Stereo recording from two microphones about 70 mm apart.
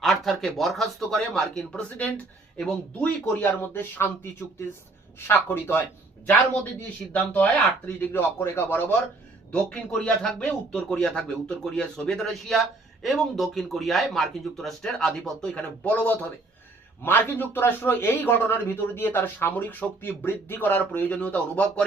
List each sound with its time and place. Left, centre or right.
0.0 s a man's voice: centre
3.6 s speech: left
5.3 s speech: left
8.1 s speech: left
9.5 s a man's voice: centre
15.8 s speech: left